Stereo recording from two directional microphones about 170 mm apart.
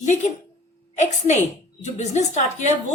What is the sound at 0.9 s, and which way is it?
A woman's voice, 45° left (ahead or behind).